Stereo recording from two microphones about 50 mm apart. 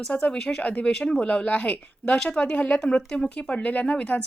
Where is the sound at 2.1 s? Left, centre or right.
Centre.